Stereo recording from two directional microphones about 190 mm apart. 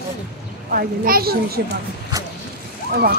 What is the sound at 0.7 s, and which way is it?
Speech, 50° right (ahead or behind).